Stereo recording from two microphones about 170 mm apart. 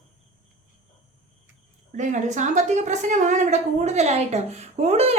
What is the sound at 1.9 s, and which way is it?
A woman's voice, 45° right (ahead or behind).